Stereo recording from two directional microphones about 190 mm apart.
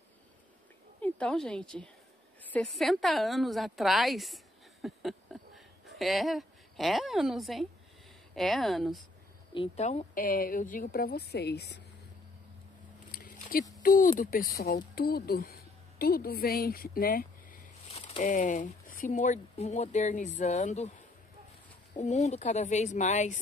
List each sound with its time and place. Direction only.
1.0 s a woman's voice: 5° left (ahead or behind)
4.8 s a sound: centre (ahead or behind)
8.4 s a woman's voice: centre (ahead or behind)
9.5 s a woman's voice: 30° left (ahead or behind); by 11.6 s 60° left (ahead or behind)
13.1 s a sound: 50° left (ahead or behind)
13.8 s a woman's voice: 45° left (ahead or behind)
17.8 s a woman's voice: 35° left (ahead or behind)